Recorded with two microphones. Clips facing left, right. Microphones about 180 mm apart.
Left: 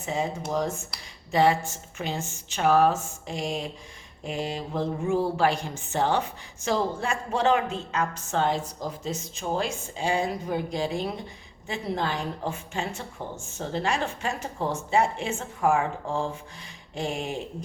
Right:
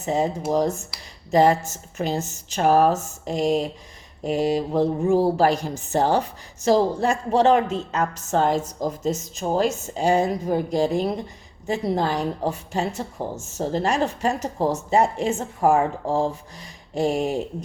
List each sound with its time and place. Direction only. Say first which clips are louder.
0.0 s speech: right 6 dB; 40° right (ahead or behind)